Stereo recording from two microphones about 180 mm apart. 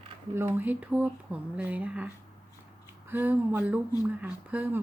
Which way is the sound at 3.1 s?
10° right (ahead or behind).